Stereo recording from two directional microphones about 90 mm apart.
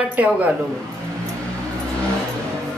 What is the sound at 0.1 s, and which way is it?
Speech, 15° right (ahead or behind).